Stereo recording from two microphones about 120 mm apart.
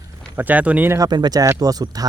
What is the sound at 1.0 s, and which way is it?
Speech, 35° right (ahead or behind).